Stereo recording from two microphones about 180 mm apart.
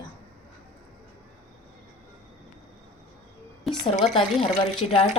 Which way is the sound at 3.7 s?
Centre (ahead or behind).